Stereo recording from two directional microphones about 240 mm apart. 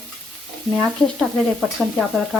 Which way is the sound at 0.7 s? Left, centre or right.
Centre.